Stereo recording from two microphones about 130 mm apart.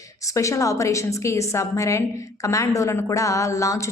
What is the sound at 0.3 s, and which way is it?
A woman's voice, 25° left (ahead or behind).